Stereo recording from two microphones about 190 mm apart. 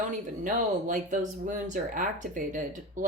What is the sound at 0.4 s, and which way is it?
Speech, 40° right (ahead or behind).